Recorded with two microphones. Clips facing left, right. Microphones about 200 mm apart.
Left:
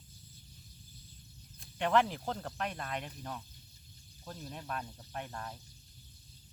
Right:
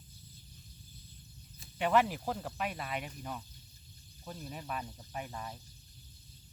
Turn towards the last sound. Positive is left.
turn(degrees=-5)  # may be behind; listen again after turning